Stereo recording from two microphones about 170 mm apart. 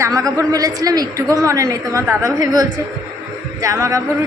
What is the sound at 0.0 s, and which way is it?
A woman's voice, 20° right (ahead or behind).